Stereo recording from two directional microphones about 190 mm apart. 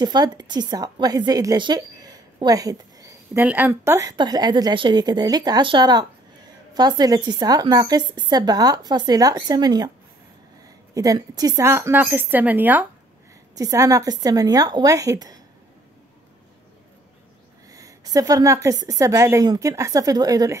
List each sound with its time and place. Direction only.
0.0 s a woman's voice: 20° right (ahead or behind)
11.0 s a woman's voice: 20° right (ahead or behind)
17.7 s a woman's voice: 20° right (ahead or behind)